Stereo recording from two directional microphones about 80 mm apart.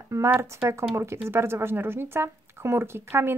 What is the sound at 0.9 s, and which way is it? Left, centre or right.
Speech, right.